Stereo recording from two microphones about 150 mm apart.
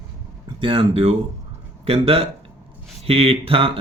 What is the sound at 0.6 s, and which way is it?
Speech, 35° right (ahead or behind).